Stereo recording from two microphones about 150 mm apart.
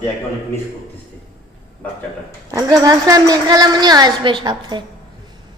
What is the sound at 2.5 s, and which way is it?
A woman's voice, 25° right (ahead or behind).